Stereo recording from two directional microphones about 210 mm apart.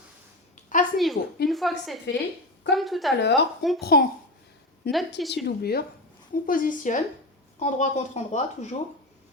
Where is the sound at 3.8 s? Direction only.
50° left (ahead or behind).